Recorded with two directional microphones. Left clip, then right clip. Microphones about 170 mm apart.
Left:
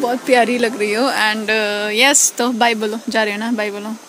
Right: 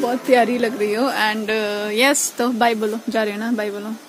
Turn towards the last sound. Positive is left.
turn(degrees=10)  # may be behind; listen again after turning